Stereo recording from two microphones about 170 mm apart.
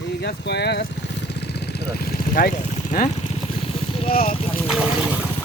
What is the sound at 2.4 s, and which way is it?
Speech, 60° left (ahead or behind).